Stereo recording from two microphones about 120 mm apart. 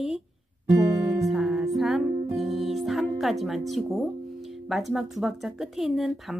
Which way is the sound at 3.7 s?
Centre (ahead or behind).